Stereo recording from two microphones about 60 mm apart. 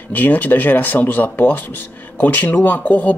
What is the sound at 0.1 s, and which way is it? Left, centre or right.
Speech, left.